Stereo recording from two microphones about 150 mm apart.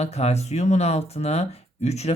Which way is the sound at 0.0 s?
45° left (ahead or behind).